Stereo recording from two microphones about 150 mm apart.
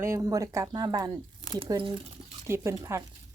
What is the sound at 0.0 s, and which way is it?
Speech, 20° right (ahead or behind).